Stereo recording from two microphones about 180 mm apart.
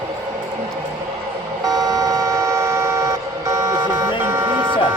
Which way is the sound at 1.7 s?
20° right (ahead or behind).